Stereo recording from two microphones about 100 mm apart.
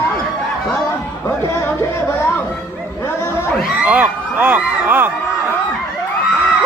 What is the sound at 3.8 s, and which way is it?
Speech, 15° right (ahead or behind).